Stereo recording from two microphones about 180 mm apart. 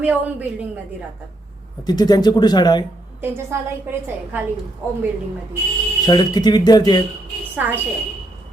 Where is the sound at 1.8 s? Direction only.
20° left (ahead or behind).